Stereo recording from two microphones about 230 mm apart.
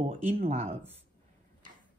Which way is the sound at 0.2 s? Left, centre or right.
Right.